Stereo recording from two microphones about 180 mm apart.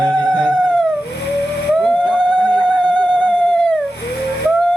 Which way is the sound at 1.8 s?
5° left (ahead or behind).